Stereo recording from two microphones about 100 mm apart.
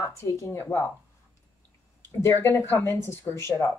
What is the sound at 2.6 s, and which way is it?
Speech, 25° left (ahead or behind).